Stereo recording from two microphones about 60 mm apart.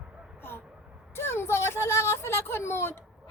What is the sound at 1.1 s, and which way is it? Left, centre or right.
Speech, left.